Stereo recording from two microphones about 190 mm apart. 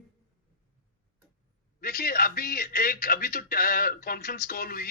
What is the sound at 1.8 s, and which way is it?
A man's voice, 50° left (ahead or behind).